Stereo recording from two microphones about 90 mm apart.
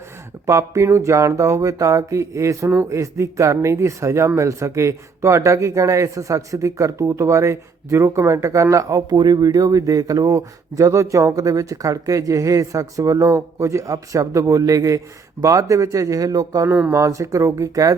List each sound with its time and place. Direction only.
0.4 s speech: 35° right (ahead or behind)